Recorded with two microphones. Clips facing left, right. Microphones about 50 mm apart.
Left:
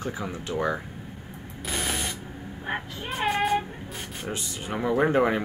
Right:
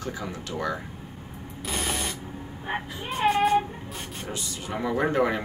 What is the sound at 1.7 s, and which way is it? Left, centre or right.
Spray, centre.